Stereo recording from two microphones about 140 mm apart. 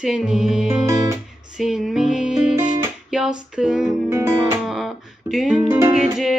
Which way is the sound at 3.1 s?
5° right (ahead or behind).